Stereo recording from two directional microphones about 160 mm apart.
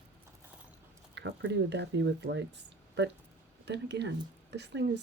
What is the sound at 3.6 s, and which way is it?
Speech, 90° right.